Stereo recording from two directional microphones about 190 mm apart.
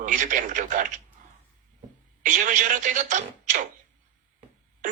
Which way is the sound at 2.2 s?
40° right (ahead or behind).